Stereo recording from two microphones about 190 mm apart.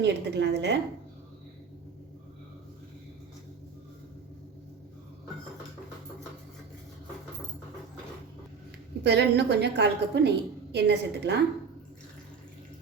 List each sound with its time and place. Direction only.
0.0 s a woman's voice: 65° right (ahead or behind)
9.0 s a woman's voice: 60° right (ahead or behind)